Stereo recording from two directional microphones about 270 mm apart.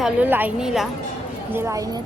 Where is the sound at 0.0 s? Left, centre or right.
Centre.